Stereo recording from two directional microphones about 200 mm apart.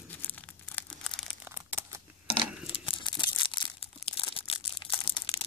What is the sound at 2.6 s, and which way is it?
Tearing, 25° left (ahead or behind).